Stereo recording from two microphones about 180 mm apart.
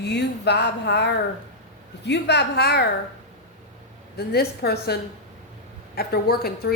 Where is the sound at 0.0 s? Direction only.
70° left (ahead or behind).